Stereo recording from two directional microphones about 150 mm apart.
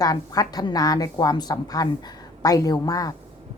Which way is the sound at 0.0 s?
25° left (ahead or behind).